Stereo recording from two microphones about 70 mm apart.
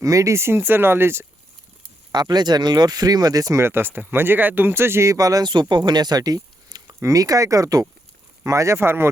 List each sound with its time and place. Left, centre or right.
0.0 s speech: right
2.1 s speech: right
3.6 s speech: right
5.1 s speech: right
7.0 s speech: right
8.4 s speech: right